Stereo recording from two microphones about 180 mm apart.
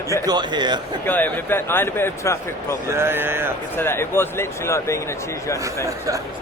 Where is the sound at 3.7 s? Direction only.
15° left (ahead or behind).